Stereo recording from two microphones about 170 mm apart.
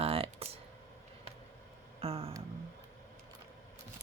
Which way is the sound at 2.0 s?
35° right (ahead or behind).